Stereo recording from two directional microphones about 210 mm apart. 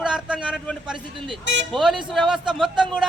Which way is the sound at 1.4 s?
60° right (ahead or behind).